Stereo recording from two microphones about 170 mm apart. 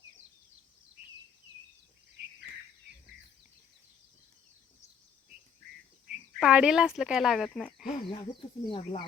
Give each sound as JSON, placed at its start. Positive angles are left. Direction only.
{"t": 6.4, "sound": "speech", "side_deg": -5}
{"t": 8.1, "sound": "speech", "side_deg": 30}